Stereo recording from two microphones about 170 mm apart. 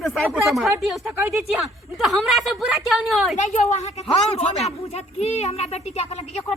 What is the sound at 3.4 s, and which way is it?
A woman's voice, 45° left (ahead or behind).